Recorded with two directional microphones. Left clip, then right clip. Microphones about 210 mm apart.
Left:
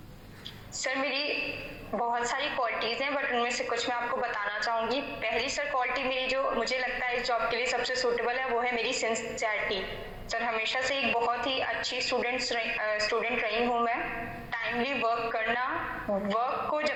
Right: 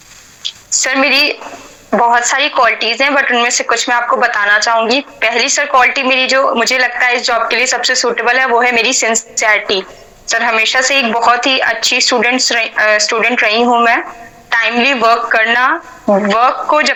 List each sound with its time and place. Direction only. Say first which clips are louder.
0.8 s a woman's voice: right 19 dB; 70° right (ahead or behind)